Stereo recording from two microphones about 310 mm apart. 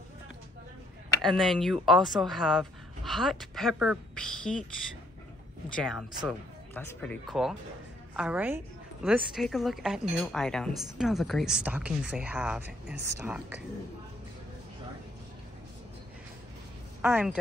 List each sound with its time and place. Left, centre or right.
1.2 s a woman's voice: centre
5.8 s a woman's voice: centre
17.0 s a woman's voice: centre